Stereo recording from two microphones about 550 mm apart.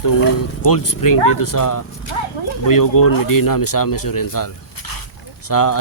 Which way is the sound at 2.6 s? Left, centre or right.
Left.